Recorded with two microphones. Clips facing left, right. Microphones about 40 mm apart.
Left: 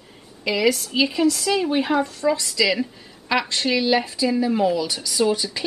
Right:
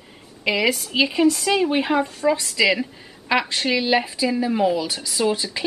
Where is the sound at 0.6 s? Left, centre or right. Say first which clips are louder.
Left 1 dB; centre.